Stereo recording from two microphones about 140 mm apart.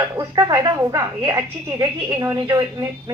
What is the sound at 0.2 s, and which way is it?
A woman's voice, 25° right (ahead or behind).